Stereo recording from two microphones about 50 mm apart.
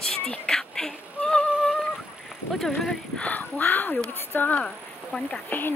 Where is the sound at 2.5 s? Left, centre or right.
Centre.